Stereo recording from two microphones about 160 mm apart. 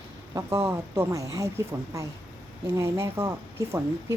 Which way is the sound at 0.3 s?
15° right (ahead or behind).